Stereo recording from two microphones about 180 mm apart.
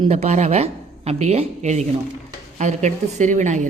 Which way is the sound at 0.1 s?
40° right (ahead or behind).